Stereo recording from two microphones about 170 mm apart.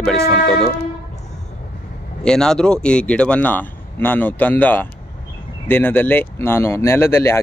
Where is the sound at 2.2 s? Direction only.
5° left (ahead or behind).